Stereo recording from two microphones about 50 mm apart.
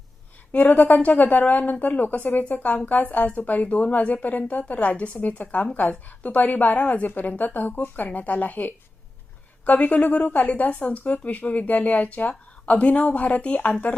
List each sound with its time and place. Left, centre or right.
0.5 s speech: left